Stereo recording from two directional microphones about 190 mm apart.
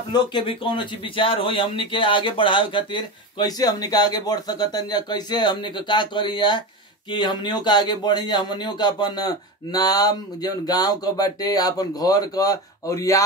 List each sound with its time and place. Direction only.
0.1 s a man's voice: 25° left (ahead or behind)